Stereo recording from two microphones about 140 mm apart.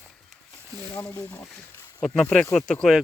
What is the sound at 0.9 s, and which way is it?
Speech, 10° left (ahead or behind).